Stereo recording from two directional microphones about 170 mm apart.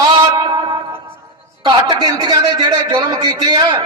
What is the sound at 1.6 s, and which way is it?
A man's voice, 25° right (ahead or behind).